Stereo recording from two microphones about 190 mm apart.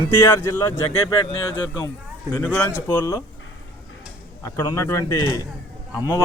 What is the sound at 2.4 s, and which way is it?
Speech, 10° left (ahead or behind).